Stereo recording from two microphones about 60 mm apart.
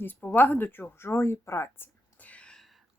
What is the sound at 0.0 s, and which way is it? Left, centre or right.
Speech, left.